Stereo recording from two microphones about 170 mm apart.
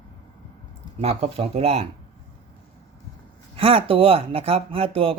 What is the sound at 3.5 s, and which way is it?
Speech, 35° right (ahead or behind).